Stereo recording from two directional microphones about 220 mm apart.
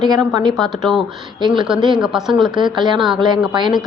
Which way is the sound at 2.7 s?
20° right (ahead or behind).